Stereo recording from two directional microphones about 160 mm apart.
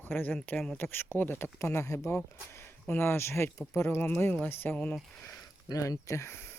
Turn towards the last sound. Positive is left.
turn(degrees=15)  # may be behind; listen again after turning